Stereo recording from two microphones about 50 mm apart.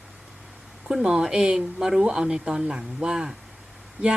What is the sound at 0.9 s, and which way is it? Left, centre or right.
Speech, centre.